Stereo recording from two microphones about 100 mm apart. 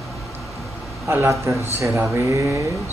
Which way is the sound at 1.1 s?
25° right (ahead or behind).